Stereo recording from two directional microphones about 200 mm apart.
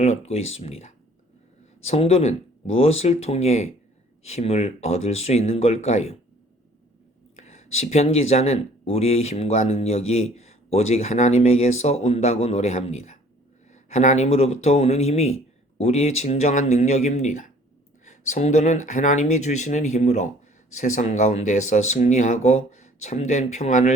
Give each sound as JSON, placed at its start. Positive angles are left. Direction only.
{"t": 0.0, "sound": "speech", "side_deg": 30}
{"t": 7.3, "sound": "speech", "side_deg": 35}